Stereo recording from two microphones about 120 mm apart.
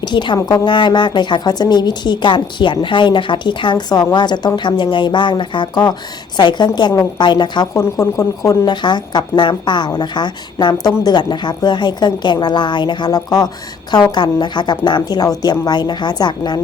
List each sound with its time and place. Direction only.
0.0 s a woman's voice: 40° left (ahead or behind)
7.7 s a woman's voice: 25° left (ahead or behind)